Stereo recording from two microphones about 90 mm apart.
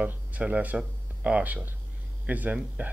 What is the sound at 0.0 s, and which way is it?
Speech, 15° right (ahead or behind).